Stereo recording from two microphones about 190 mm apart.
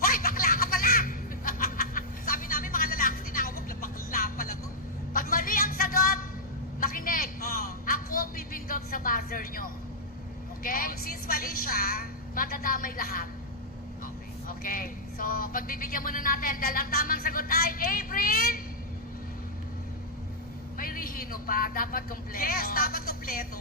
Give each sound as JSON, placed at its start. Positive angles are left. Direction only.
{"t": 0.0, "sound": "snicker", "side_deg": 50}
{"t": 5.1, "sound": "a sound", "side_deg": 50}
{"t": 14.4, "sound": "speech", "side_deg": 50}
{"t": 20.7, "sound": "speech", "side_deg": 50}